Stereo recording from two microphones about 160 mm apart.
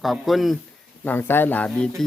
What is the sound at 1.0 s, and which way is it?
Speech, 10° left (ahead or behind).